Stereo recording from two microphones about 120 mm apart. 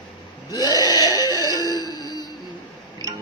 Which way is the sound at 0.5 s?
30° left (ahead or behind).